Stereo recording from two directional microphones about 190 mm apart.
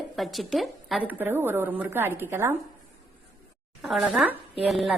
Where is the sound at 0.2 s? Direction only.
Centre (ahead or behind).